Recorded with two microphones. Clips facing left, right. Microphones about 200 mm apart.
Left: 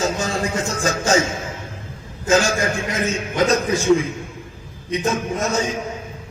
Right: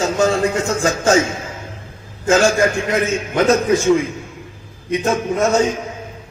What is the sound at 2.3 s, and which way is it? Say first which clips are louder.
A man's voice: right 4 dB; 60° right (ahead or behind).